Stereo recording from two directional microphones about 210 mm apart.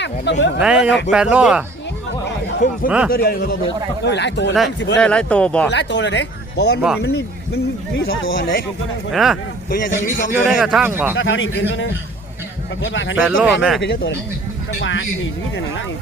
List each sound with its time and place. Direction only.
0.0 s speech: 55° left (ahead or behind)
0.6 s speech: 5° right (ahead or behind)
2.6 s a man's voice: 35° left (ahead or behind); by 4.5 s 55° left (ahead or behind)
4.9 s speech: 5° left (ahead or behind)
5.7 s speech: 55° left (ahead or behind)
9.1 s speech: centre (ahead or behind)
9.6 s a man's voice: 40° left (ahead or behind)
10.3 s speech: 5° right (ahead or behind)
11.2 s speech: 65° left (ahead or behind)
13.2 s speech: 5° right (ahead or behind)
13.8 s a man's voice: 50° left (ahead or behind)
14.8 s speech: 65° left (ahead or behind)